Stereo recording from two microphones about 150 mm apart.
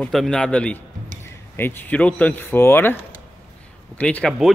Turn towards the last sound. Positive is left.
turn(degrees=10)  # may be behind; listen again after turning